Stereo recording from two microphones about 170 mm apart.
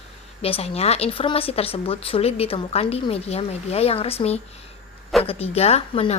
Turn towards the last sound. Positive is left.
turn(degrees=35)  # may be behind; listen again after turning